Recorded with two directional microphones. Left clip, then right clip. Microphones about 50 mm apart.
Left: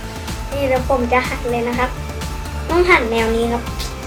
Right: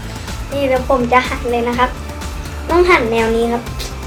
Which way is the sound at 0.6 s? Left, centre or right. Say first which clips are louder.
Right 2 dB; centre.